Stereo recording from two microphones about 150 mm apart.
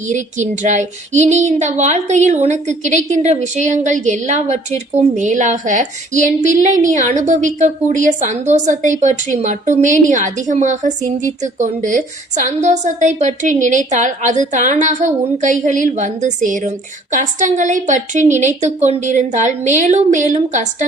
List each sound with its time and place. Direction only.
0.1 s a woman's voice: 55° right (ahead or behind)